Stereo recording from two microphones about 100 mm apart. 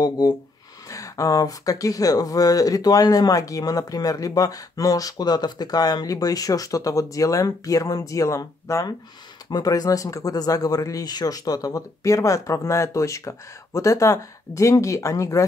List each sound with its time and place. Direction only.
0.2 s speech: 40° left (ahead or behind)